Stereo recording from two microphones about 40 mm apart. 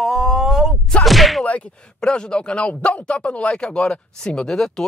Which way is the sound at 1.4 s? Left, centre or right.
Left.